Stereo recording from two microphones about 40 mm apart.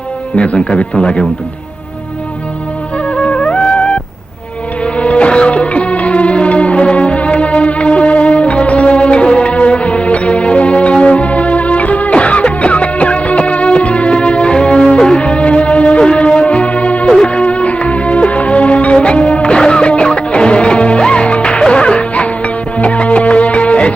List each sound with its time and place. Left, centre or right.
0.3 s speech: left
3.1 s music: left